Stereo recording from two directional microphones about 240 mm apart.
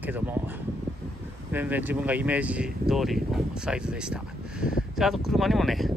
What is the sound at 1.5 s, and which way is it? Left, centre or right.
Speech, centre.